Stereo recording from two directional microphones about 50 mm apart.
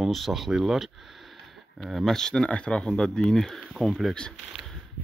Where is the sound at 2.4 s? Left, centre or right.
Left; by 4.7 s centre.